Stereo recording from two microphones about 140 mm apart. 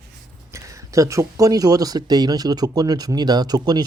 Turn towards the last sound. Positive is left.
turn(degrees=-30)  # may be behind; listen again after turning